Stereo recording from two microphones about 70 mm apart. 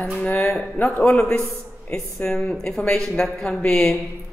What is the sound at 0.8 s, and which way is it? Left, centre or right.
Speech, left.